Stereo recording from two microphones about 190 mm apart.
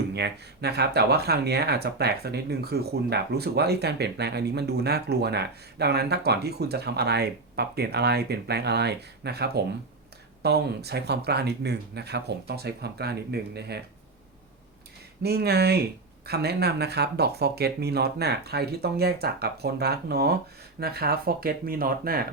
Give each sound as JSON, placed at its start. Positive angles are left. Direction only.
{"t": 0.1, "sound": "speech", "side_deg": -60}
{"t": 15.2, "sound": "speech", "side_deg": -55}